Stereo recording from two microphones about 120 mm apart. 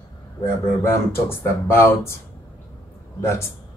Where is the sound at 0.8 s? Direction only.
20° left (ahead or behind).